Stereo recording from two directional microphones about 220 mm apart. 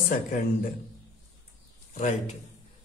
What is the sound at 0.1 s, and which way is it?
Speech, 40° left (ahead or behind).